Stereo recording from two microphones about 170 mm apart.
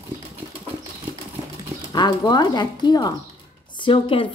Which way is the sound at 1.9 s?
25° left (ahead or behind).